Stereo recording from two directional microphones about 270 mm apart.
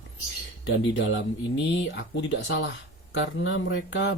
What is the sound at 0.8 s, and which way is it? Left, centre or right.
Speech, left.